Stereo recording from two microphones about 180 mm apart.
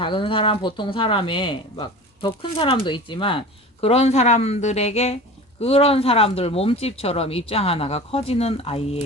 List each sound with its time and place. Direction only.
0.0 s speech: 30° left (ahead or behind)